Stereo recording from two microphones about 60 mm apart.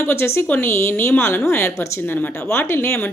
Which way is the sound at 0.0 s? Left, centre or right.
Left.